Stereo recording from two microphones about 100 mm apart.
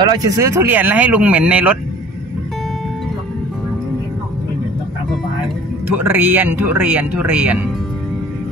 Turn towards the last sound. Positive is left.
turn(degrees=-15)  # may be behind; listen again after turning